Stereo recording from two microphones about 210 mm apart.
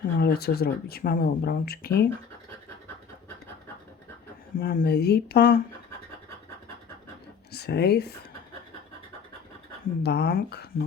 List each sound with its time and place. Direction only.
0.2 s speech: 50° left (ahead or behind)
4.5 s speech: 45° left (ahead or behind)
7.5 s speech: 50° left (ahead or behind)
10.0 s speech: 50° left (ahead or behind)